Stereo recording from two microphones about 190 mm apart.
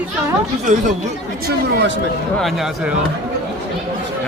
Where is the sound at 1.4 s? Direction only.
65° right (ahead or behind).